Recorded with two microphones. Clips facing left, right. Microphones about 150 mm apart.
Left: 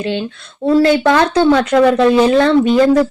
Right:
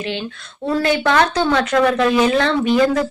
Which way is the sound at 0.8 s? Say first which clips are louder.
Left 4 dB; 30° left (ahead or behind).